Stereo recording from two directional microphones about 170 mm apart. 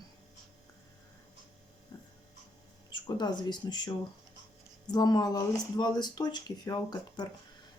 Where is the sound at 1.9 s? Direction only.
25° left (ahead or behind).